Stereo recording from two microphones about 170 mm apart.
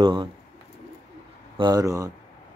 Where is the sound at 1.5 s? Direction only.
25° right (ahead or behind).